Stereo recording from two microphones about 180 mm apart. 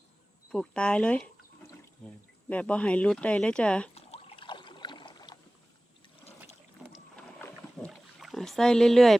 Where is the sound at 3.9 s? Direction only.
35° left (ahead or behind).